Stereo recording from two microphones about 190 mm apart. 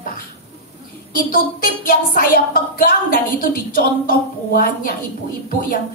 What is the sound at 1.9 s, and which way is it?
A woman's voice, 45° left (ahead or behind).